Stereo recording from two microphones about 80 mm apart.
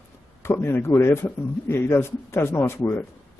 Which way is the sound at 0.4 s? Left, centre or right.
Left.